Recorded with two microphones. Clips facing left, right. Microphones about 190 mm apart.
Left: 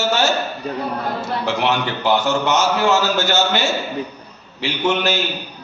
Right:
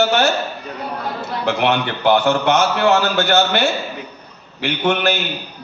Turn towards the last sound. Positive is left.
turn(degrees=-60)  # may be behind; listen again after turning